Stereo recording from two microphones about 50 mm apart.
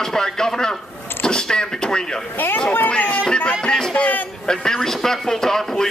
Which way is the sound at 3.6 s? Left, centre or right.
Centre.